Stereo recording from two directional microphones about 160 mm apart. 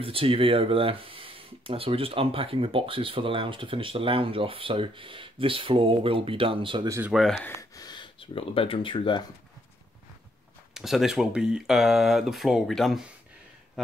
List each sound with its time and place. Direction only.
0.0 s speech: 35° right (ahead or behind)
7.1 s speech: centre (ahead or behind)
7.4 s speech: 20° left (ahead or behind)
10.7 s speech: centre (ahead or behind)